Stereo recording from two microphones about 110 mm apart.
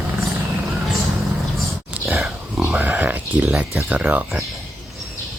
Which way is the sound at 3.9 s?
15° right (ahead or behind).